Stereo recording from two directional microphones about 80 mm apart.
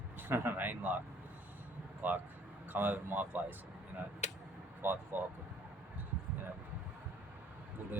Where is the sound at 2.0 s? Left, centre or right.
Right.